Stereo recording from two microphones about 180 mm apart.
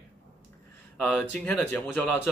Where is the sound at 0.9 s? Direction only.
5° left (ahead or behind).